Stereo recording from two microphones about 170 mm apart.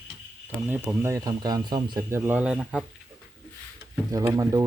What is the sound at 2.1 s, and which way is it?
Speech, 15° right (ahead or behind).